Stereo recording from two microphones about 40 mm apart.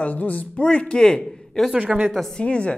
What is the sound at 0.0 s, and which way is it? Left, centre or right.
Speech, left.